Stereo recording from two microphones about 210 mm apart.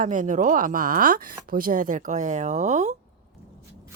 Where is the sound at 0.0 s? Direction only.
40° right (ahead or behind).